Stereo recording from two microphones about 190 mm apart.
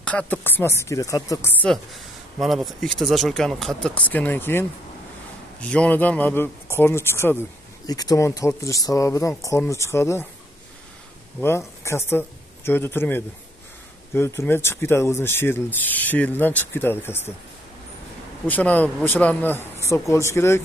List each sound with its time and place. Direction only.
0.0 s speech: 5° left (ahead or behind)
2.4 s speech: centre (ahead or behind)
11.4 s speech: 15° left (ahead or behind)
18.5 s speech: 10° left (ahead or behind)